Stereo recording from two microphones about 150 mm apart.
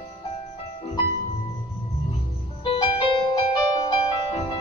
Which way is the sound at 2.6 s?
35° left (ahead or behind).